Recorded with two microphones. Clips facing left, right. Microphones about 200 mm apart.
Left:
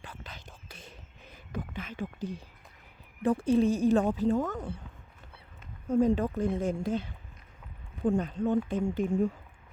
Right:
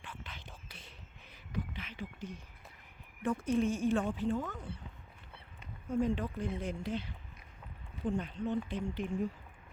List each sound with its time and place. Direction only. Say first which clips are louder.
0.0 s whispering: left 3 dB; 40° left (ahead or behind)
2.3 s speech: left 7 dB; 35° left (ahead or behind)
5.9 s speech: left 7 dB; 40° left (ahead or behind)